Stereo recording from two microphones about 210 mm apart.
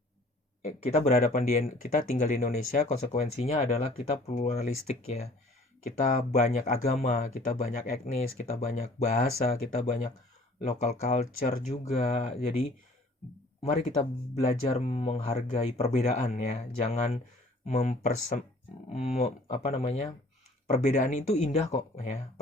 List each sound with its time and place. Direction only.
0.6 s speech: 35° left (ahead or behind)
6.3 s speech: 35° left (ahead or behind)
10.6 s speech: 30° left (ahead or behind)